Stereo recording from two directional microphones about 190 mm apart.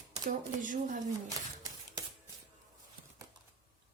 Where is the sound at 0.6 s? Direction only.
45° right (ahead or behind).